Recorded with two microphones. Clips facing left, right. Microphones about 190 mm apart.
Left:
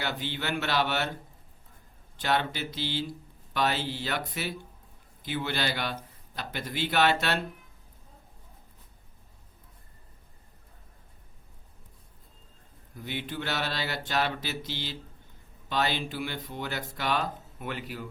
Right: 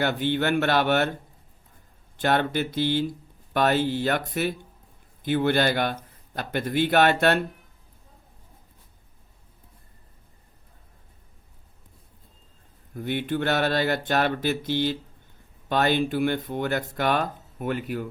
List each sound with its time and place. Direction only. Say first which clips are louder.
0.0 s speech: right 9 dB; 55° right (ahead or behind)
2.1 s speech: right 6 dB; 50° right (ahead or behind)
12.9 s speech: right 9 dB; 55° right (ahead or behind)